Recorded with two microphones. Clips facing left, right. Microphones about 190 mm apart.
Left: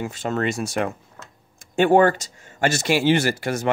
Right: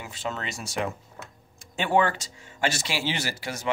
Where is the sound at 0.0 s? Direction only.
45° left (ahead or behind).